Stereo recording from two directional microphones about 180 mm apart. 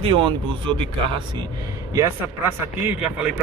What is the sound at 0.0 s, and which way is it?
Speech, 30° right (ahead or behind).